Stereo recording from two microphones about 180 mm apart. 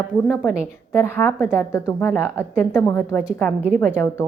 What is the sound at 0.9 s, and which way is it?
A woman's voice, 15° left (ahead or behind).